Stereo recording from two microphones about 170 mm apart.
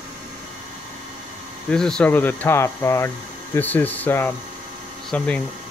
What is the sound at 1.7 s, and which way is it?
Speech, 5° left (ahead or behind).